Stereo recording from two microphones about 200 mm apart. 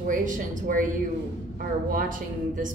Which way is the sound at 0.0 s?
40° right (ahead or behind).